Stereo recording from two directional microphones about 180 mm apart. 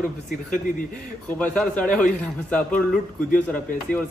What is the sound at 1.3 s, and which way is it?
Speech, 5° left (ahead or behind).